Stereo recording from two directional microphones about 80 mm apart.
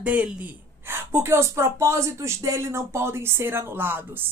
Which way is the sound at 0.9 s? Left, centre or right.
Right.